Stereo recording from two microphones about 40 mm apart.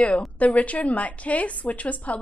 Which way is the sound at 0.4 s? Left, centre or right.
Left.